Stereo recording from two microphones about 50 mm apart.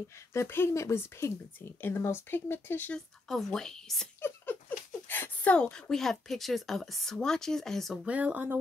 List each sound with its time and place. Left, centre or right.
0.3 s speech: left
1.8 s speech: left
3.3 s speech: centre
4.2 s a sound: left
5.5 s a woman's voice: left
5.9 s speech: centre
8.1 s speech: right